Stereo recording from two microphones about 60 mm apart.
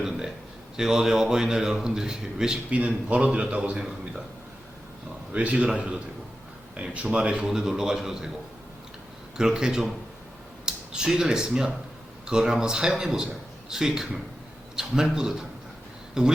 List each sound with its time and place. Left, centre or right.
0.0 s a sound: centre
0.8 s a man's voice: centre
2.6 s a man's voice: right
5.3 s a man's voice: right
7.5 s a man's voice: centre
9.4 s a man's voice: centre